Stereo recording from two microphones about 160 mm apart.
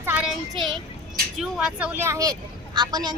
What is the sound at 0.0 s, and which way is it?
Child singing, 10° right (ahead or behind).